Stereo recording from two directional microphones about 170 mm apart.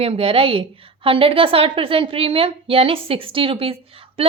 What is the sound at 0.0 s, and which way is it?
A woman's voice, 35° right (ahead or behind).